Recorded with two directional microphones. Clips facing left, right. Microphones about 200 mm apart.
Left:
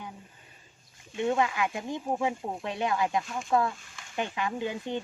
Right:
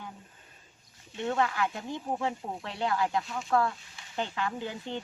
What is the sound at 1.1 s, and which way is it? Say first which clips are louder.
Speech: left 2 dB; 15° left (ahead or behind).